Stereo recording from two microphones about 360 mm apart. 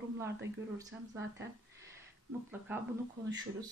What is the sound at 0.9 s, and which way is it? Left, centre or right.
Speech, centre.